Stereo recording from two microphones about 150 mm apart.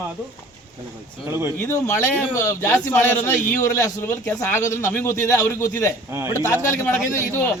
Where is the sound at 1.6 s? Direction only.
20° left (ahead or behind).